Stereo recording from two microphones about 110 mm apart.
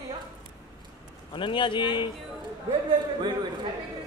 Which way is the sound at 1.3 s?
50° left (ahead or behind).